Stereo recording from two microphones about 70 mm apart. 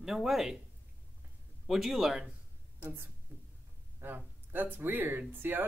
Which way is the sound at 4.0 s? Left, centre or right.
Right.